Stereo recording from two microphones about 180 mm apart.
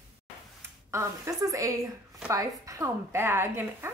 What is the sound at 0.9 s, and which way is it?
A woman's voice, 15° right (ahead or behind).